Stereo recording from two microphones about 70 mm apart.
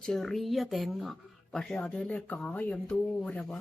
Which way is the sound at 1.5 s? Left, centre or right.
Centre.